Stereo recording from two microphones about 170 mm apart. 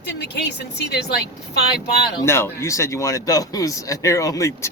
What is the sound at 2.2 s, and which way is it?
Speech, 15° left (ahead or behind).